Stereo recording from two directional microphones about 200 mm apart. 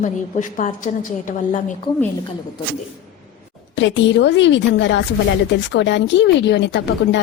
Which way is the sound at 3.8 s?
65° left (ahead or behind).